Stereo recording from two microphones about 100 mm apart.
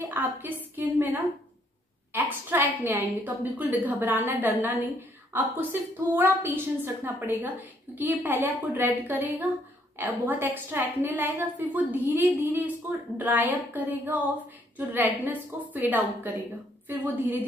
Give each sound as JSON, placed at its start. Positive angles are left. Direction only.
{"t": 0.0, "sound": "a woman's voice", "side_deg": -20}